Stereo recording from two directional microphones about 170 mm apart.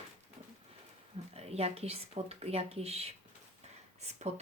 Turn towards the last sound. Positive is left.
turn(degrees=-40)  # may be behind; listen again after turning